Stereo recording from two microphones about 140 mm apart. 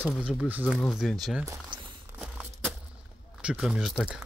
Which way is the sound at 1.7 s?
35° right (ahead or behind).